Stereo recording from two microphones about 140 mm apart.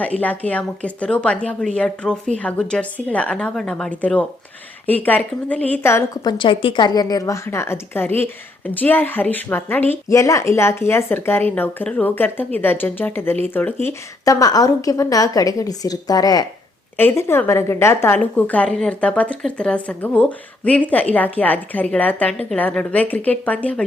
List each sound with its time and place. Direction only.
0.2 s a woman's voice: 10° left (ahead or behind)
6.2 s a woman's voice: 35° left (ahead or behind); by 23.8 s 10° left (ahead or behind)